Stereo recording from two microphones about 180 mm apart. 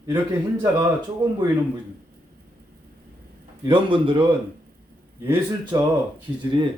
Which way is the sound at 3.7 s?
30° right (ahead or behind).